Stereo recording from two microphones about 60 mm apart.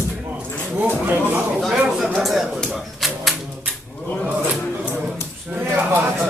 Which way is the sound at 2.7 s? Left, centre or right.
Centre.